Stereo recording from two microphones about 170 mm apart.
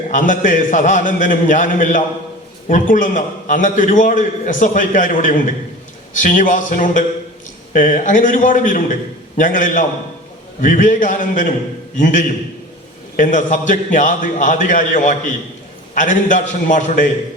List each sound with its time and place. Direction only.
0.1 s a man's voice: 50° left (ahead or behind)